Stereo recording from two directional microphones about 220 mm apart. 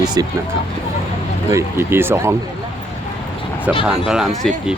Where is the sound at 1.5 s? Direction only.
10° right (ahead or behind).